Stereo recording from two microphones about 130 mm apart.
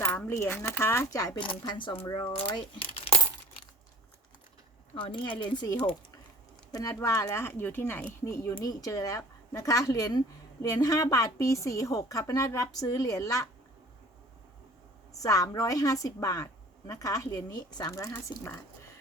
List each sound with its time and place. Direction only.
0.0 s a woman's voice: 20° left (ahead or behind)
1.4 s speech: 40° left (ahead or behind)
4.9 s a woman's voice: 40° left (ahead or behind)
15.2 s a woman's voice: 25° left (ahead or behind)